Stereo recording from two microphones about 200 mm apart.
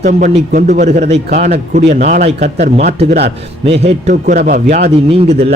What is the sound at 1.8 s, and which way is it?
A man's voice, 40° right (ahead or behind).